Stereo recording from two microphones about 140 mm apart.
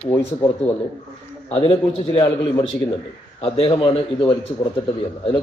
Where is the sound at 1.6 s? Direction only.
45° left (ahead or behind).